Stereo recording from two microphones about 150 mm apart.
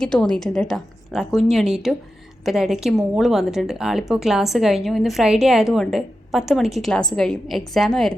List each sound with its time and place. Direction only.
0.0 s a woman's voice: 5° left (ahead or behind)